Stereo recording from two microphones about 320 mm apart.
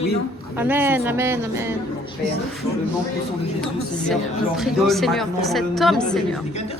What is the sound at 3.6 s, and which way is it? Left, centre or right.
Speech, centre.